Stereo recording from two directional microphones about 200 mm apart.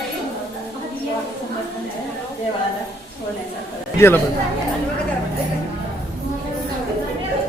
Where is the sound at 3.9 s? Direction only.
10° left (ahead or behind).